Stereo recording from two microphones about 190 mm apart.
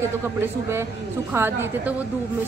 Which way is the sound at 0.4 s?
15° right (ahead or behind).